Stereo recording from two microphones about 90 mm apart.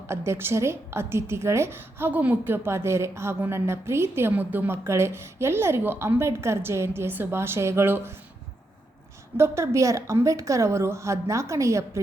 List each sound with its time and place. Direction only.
0.1 s a woman's voice: 30° right (ahead or behind)
9.4 s a woman's voice: 35° right (ahead or behind)